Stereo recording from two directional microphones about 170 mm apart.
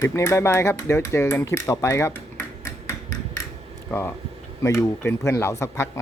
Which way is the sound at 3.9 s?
10° left (ahead or behind).